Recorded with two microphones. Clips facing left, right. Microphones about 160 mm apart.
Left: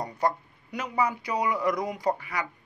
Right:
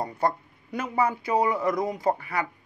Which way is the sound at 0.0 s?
25° right (ahead or behind).